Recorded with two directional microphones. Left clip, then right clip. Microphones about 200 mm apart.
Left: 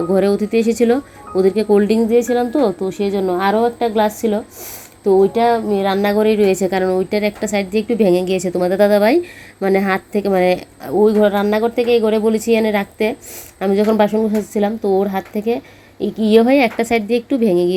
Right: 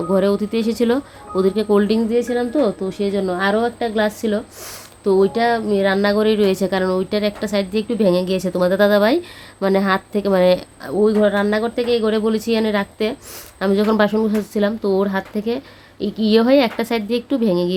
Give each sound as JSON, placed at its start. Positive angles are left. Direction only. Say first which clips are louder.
{"t": 0.1, "sound": "speech", "louder": "left 2 dB", "side_deg": 5}